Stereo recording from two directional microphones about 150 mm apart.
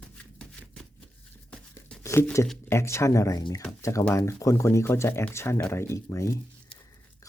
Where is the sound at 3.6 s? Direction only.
20° left (ahead or behind).